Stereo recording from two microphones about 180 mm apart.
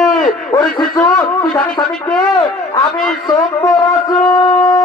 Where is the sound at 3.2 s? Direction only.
20° left (ahead or behind).